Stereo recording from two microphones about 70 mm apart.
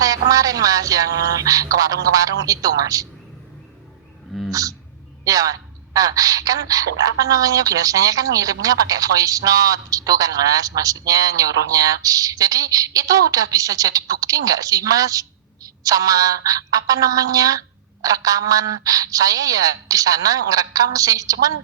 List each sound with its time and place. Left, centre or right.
0.0 s a man's voice: right
4.3 s speech: centre
5.2 s a man's voice: right